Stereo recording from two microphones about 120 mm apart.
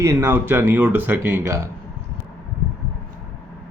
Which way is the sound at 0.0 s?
25° right (ahead or behind).